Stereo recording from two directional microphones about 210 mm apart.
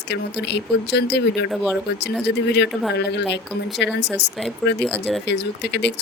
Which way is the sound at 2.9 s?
55° left (ahead or behind).